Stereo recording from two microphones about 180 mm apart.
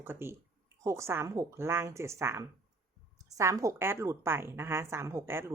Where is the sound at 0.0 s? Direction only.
15° right (ahead or behind).